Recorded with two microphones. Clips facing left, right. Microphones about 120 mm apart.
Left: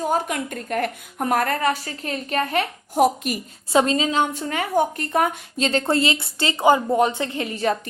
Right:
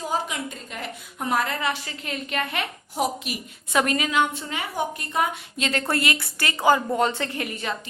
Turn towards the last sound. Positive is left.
turn(degrees=30)  # may be behind; listen again after turning